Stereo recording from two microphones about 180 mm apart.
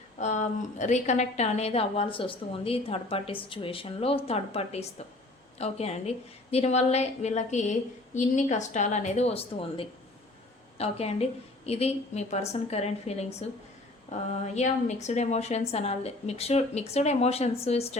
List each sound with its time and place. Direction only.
0.2 s a woman's voice: 40° left (ahead or behind)